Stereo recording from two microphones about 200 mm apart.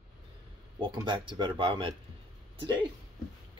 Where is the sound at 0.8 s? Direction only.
20° right (ahead or behind).